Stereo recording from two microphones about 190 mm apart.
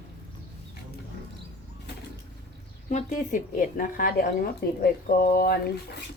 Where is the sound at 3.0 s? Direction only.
45° left (ahead or behind).